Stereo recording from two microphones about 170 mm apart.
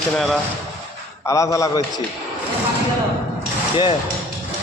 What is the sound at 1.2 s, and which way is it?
Speech, 20° left (ahead or behind).